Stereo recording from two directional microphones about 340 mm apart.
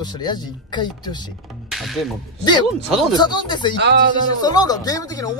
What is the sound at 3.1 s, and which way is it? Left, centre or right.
Speech, centre.